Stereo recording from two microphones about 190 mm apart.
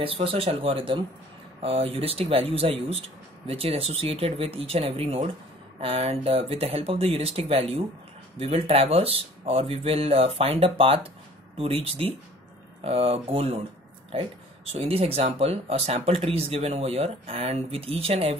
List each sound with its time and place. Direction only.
0.2 s speech: 30° right (ahead or behind)